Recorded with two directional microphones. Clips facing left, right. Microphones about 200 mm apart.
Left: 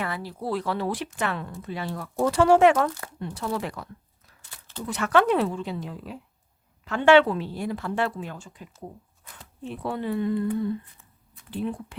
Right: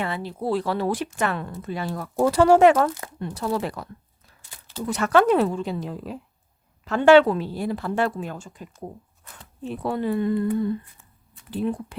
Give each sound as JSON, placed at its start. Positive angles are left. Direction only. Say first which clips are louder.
{"t": 0.0, "sound": "a woman's voice", "louder": "right 3 dB", "side_deg": -25}
{"t": 4.9, "sound": "a woman's voice", "louder": "right 3 dB", "side_deg": -40}